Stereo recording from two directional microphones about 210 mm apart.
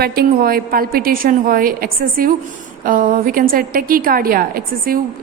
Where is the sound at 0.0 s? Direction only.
45° right (ahead or behind).